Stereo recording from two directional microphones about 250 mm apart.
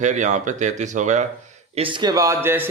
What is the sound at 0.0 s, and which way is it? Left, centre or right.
A man's voice, right.